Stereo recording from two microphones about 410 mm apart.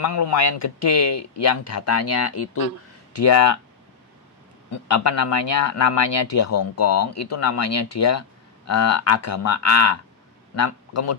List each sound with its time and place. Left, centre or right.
0.0 s speech: left
4.9 s speech: left